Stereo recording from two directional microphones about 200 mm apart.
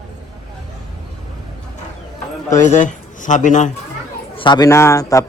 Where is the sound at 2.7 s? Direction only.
40° left (ahead or behind).